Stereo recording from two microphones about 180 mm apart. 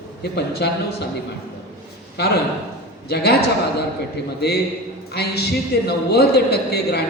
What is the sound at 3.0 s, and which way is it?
A man's voice, 65° left (ahead or behind).